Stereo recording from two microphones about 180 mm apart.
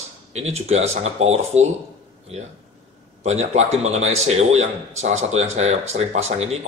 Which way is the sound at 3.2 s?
40° right (ahead or behind).